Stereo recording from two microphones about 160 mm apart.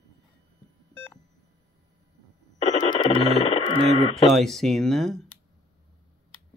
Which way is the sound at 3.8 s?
40° right (ahead or behind).